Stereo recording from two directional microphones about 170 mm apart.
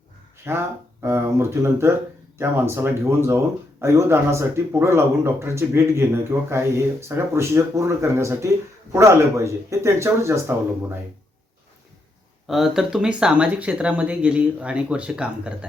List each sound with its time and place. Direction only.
0.5 s speech: 15° right (ahead or behind)
12.5 s speech: centre (ahead or behind)